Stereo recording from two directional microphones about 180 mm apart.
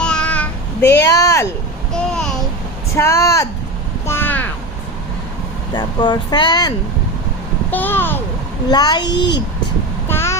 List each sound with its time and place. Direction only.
0.0 s child singing: 5° left (ahead or behind)
1.0 s a child's voice: 20° left (ahead or behind)
2.9 s a child's voice: 15° left (ahead or behind)
4.0 s vehicle: 15° left (ahead or behind)
5.7 s speech: 25° left (ahead or behind)
7.7 s a child's voice: 10° left (ahead or behind)
8.7 s speech: 20° left (ahead or behind)
9.1 s a child's voice: 75° left (ahead or behind)
10.1 s hum: 15° left (ahead or behind)